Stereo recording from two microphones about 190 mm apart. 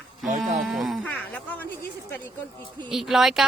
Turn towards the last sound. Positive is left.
turn(degrees=0)  # may be behind; listen again after turning